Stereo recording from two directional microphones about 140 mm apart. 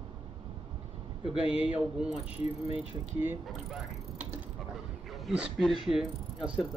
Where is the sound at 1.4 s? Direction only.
40° left (ahead or behind).